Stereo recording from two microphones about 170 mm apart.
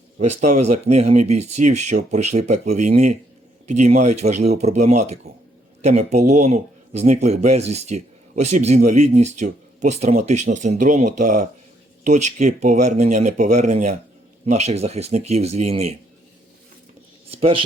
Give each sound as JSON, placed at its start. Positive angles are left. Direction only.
{"t": 0.2, "sound": "a man's voice", "side_deg": -45}
{"t": 17.3, "sound": "speech", "side_deg": -35}